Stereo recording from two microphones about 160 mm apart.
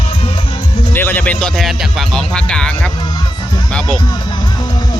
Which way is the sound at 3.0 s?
30° left (ahead or behind).